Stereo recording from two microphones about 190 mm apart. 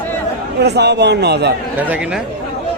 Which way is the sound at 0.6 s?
60° right (ahead or behind).